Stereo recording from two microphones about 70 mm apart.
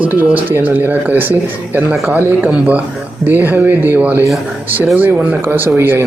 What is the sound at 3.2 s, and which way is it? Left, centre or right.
A man's voice, right.